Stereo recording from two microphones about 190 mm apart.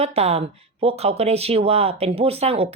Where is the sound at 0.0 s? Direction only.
35° right (ahead or behind).